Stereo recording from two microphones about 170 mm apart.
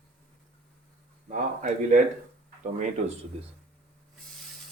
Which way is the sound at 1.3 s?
45° right (ahead or behind).